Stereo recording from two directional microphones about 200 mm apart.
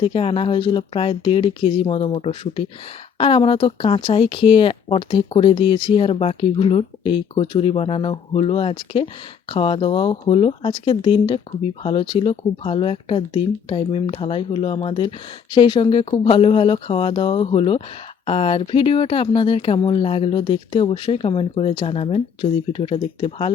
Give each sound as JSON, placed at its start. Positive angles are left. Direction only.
{"t": 0.0, "sound": "speech", "side_deg": 30}